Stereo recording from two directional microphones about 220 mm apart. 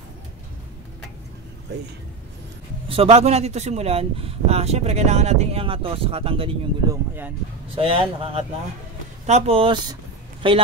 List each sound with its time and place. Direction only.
2.9 s a man's voice: 25° right (ahead or behind)
6.9 s speech: 10° right (ahead or behind)
7.7 s a man's voice: 25° right (ahead or behind)